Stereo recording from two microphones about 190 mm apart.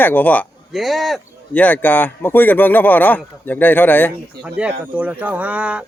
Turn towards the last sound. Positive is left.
turn(degrees=-5)  # may be behind; listen again after turning